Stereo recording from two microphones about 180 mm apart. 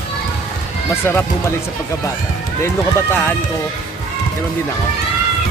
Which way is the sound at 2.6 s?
10° left (ahead or behind).